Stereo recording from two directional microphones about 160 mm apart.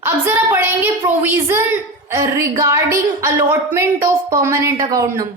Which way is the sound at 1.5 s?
15° right (ahead or behind).